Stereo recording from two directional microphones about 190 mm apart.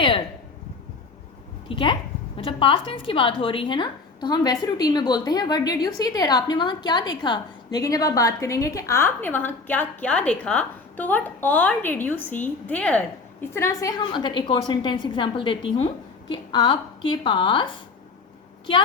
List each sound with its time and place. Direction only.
1.6 s a woman's voice: 25° left (ahead or behind)